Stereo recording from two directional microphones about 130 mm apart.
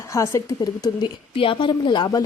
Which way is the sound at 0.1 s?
25° left (ahead or behind).